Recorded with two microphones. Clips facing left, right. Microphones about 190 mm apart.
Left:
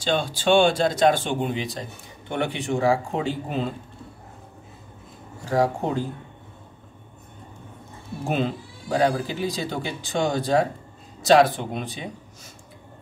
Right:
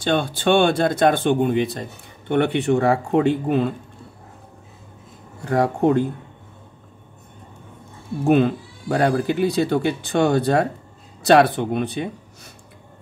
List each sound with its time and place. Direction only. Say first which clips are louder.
0.0 s speech: right 3 dB; 55° right (ahead or behind)
5.4 s speech: right 4 dB; 60° right (ahead or behind)
8.2 s speech: right 9 dB; 60° right (ahead or behind)